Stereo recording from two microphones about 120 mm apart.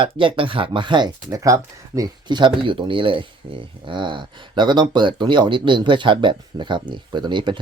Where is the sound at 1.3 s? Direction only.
25° right (ahead or behind).